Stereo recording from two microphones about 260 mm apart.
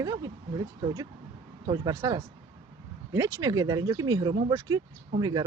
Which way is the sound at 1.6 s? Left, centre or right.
Centre.